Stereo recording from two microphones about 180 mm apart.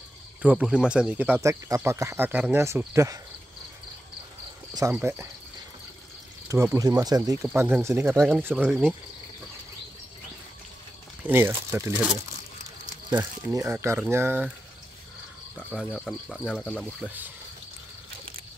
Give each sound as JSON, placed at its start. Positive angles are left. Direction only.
{"t": 0.4, "sound": "speech", "side_deg": -5}
{"t": 5.0, "sound": "speech", "side_deg": -15}
{"t": 6.5, "sound": "speech", "side_deg": -15}
{"t": 8.6, "sound": "cricket", "side_deg": 0}
{"t": 11.2, "sound": "speech", "side_deg": -10}
{"t": 15.8, "sound": "cricket", "side_deg": 5}